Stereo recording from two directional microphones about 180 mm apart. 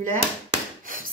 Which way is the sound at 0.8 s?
50° right (ahead or behind).